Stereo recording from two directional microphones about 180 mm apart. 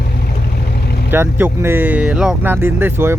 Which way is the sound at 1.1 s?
10° right (ahead or behind).